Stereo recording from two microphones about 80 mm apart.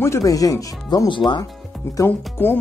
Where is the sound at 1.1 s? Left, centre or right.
Left.